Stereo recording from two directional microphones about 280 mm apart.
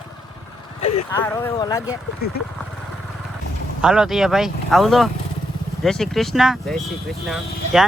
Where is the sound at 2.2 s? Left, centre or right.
Left.